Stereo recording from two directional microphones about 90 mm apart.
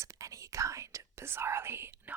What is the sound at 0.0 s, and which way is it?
Whispering, 35° right (ahead or behind).